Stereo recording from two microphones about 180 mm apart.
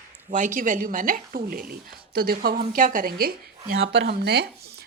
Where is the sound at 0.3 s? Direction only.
45° right (ahead or behind).